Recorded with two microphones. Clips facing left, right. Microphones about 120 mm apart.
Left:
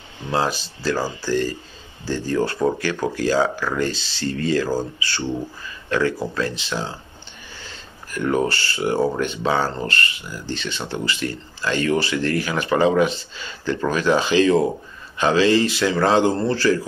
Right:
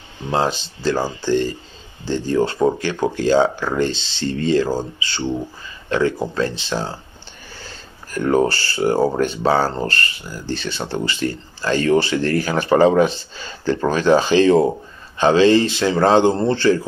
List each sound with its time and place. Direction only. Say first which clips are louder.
0.3 s speech: right 2 dB; 25° right (ahead or behind)